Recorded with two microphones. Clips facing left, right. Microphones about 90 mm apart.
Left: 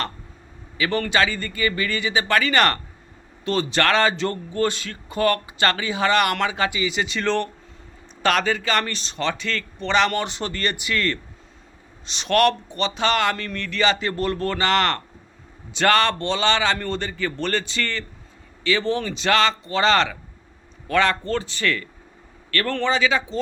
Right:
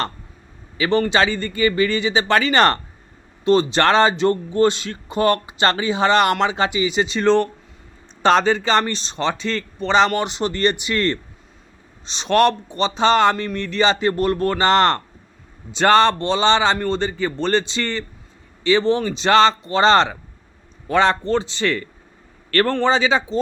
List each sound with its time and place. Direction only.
0.8 s a man's voice: 20° right (ahead or behind)